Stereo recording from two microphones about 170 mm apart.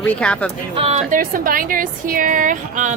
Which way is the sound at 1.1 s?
55° right (ahead or behind).